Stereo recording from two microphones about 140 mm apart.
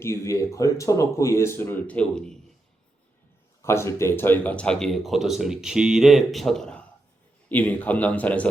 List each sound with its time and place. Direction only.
0.0 s speech: 20° left (ahead or behind); by 2.4 s 5° left (ahead or behind)
3.6 s speech: 20° left (ahead or behind)